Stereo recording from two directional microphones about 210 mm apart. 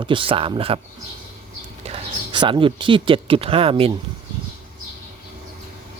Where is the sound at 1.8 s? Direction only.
25° right (ahead or behind).